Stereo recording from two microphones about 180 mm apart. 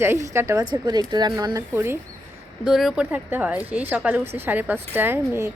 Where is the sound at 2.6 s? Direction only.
Centre (ahead or behind).